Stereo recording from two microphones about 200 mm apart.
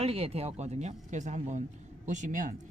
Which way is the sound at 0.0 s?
30° right (ahead or behind).